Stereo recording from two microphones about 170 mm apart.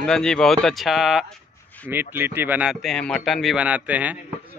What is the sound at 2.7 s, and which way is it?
A man's voice, centre (ahead or behind).